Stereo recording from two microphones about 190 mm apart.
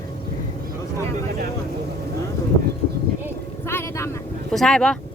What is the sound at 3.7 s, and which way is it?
Vehicle, 15° left (ahead or behind).